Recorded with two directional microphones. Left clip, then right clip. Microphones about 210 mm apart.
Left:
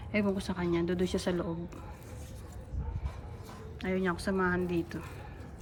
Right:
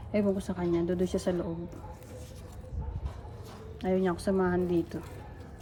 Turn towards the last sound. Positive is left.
turn(degrees=-20)  # may be behind; listen again after turning